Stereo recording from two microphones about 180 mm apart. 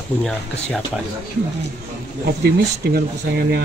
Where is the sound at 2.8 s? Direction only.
60° right (ahead or behind).